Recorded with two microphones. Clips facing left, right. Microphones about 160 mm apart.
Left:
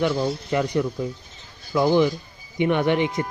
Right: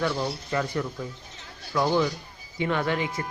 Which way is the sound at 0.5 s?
20° left (ahead or behind).